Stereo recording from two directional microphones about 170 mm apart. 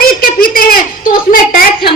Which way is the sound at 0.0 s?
55° left (ahead or behind).